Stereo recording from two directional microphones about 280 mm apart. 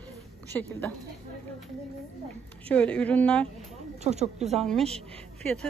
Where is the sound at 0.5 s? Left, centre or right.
Centre.